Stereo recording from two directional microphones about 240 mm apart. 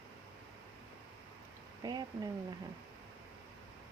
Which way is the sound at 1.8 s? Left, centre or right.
Centre.